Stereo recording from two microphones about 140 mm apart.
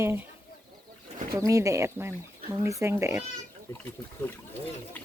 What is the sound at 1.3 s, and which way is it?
Speech, 20° right (ahead or behind).